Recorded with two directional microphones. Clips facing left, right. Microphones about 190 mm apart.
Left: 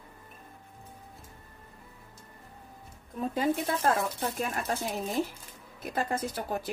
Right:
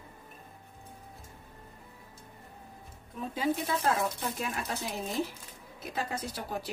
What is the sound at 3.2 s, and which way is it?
Speech, 50° left (ahead or behind).